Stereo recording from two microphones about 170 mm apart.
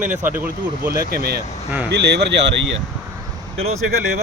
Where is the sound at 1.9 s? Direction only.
85° right.